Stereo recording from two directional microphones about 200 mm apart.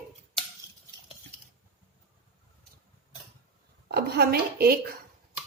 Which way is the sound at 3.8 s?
55° right (ahead or behind).